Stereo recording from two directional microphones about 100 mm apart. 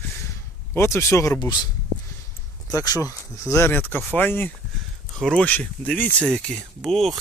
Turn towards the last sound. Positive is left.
turn(degrees=0)  # may be behind; listen again after turning